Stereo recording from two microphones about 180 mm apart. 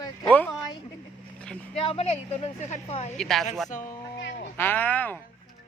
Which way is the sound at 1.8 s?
30° left (ahead or behind).